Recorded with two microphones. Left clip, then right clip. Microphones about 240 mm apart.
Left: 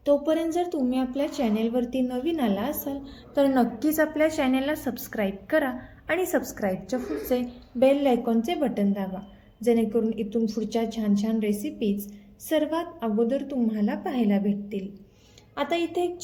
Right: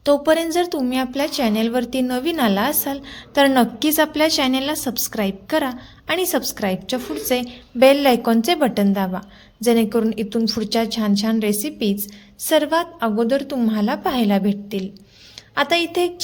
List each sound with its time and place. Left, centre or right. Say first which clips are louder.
0.0 s a woman's voice: right 6 dB; right
3.8 s a woman's voice: right 4 dB; right
7.8 s a woman's voice: right 8 dB; right
15.6 s a woman's voice: right 7 dB; right